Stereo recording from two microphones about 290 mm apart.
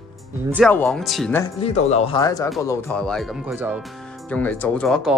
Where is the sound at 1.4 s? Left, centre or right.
Left; by 3.8 s centre.